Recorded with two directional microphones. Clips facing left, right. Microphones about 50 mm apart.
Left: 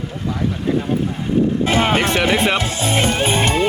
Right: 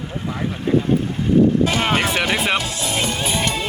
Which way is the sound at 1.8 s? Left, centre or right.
Left.